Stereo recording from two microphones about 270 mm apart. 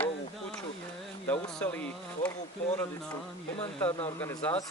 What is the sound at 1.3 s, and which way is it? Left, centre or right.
Speech, centre.